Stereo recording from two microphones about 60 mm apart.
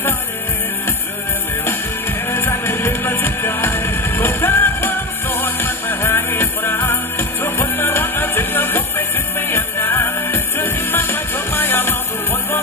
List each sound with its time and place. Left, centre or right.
2.2 s music: left